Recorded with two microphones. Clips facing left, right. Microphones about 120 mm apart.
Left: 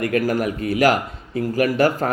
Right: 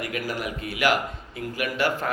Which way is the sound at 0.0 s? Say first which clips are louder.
Left 10 dB; 50° left (ahead or behind).